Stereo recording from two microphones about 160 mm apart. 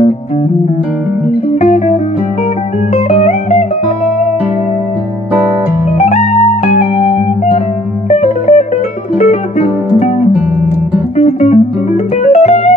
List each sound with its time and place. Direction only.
1.6 s music: 40° left (ahead or behind)
3.1 s music: 45° left (ahead or behind)
5.9 s music: 45° left (ahead or behind)
8.1 s music: 45° left (ahead or behind)
11.1 s music: 45° left (ahead or behind)